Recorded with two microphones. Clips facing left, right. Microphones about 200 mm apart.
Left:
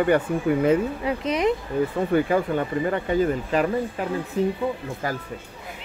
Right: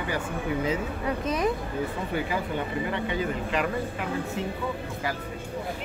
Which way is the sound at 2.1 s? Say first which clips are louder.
Left 9 dB; 50° left (ahead or behind).